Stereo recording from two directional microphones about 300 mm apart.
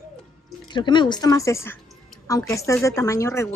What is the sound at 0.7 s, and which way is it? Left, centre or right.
Speech, centre.